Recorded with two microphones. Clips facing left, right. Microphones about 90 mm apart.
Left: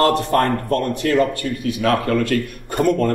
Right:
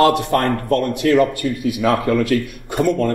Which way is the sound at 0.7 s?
25° left (ahead or behind).